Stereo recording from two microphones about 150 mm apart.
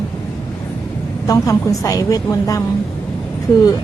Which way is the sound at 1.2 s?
25° left (ahead or behind).